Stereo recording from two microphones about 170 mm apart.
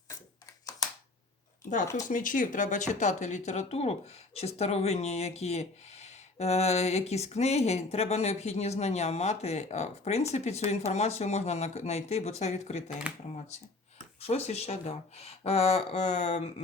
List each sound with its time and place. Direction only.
2.0 s speech: 50° left (ahead or behind)
13.1 s speech: 5° right (ahead or behind)
14.2 s speech: 40° left (ahead or behind)